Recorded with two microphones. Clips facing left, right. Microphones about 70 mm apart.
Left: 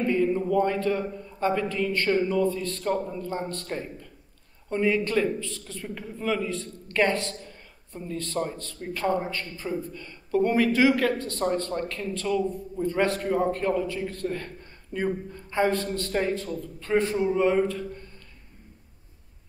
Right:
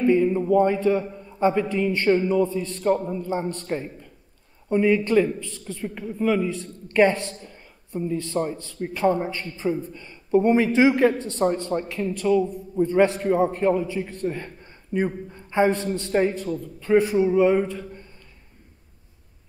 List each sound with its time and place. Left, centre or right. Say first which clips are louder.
0.0 s speech: right 4 dB; centre